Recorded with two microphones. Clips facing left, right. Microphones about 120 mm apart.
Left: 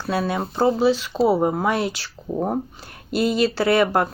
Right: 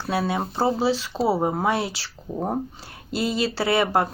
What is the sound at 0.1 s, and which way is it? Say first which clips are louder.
Speech: left 1 dB; 25° right (ahead or behind).